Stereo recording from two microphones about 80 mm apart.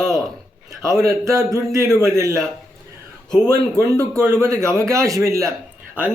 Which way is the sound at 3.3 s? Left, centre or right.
Left.